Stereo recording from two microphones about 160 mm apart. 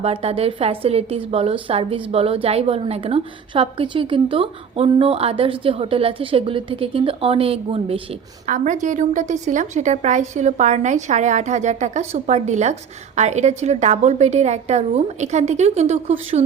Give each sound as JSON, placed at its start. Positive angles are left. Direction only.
{"t": 0.0, "sound": "a woman's voice", "side_deg": -40}
{"t": 8.4, "sound": "a woman's voice", "side_deg": -55}